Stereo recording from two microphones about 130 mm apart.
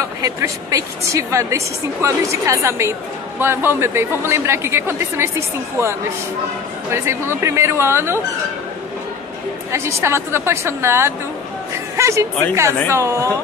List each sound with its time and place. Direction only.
0.2 s a woman's voice: 25° right (ahead or behind)
9.7 s a woman's voice: 20° right (ahead or behind)